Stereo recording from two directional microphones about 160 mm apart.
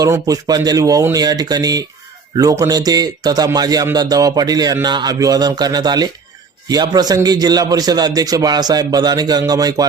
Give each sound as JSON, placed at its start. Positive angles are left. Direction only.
{"t": 0.0, "sound": "speech", "side_deg": -20}